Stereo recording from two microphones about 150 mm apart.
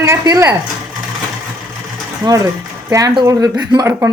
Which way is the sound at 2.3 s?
30° right (ahead or behind).